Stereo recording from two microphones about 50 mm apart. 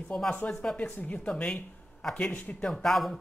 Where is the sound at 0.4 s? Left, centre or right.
Left.